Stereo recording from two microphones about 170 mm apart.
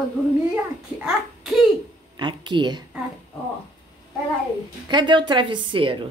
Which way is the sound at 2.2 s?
30° right (ahead or behind).